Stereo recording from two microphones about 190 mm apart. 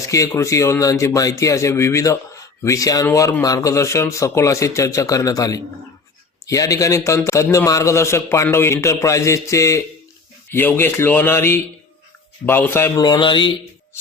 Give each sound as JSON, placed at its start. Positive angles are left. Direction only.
{"t": 0.0, "sound": "speech", "side_deg": 15}